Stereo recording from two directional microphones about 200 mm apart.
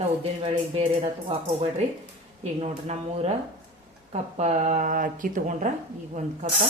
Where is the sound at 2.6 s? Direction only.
35° right (ahead or behind).